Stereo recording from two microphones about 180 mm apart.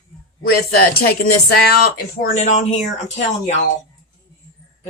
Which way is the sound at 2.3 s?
40° left (ahead or behind).